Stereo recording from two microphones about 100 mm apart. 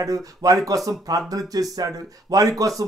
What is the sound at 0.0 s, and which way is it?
Speech, 35° right (ahead or behind).